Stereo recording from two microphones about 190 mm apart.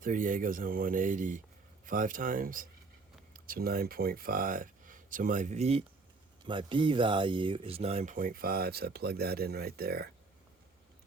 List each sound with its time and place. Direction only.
0.0 s speech: 45° right (ahead or behind)